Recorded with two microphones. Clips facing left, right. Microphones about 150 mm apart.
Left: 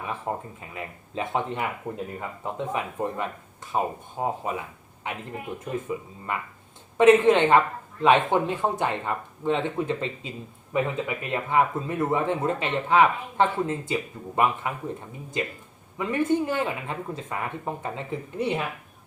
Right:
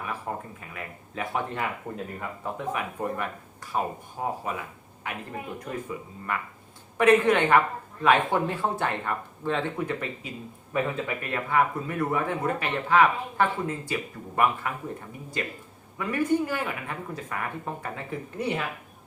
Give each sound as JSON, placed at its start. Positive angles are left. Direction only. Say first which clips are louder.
{"t": 0.3, "sound": "a sound", "louder": "left 4 dB", "side_deg": 20}
{"t": 0.6, "sound": "speech", "louder": "left 2 dB", "side_deg": 25}
{"t": 6.3, "sound": "speech", "louder": "left 1 dB", "side_deg": 20}
{"t": 16.0, "sound": "speech", "louder": "left 1 dB", "side_deg": 20}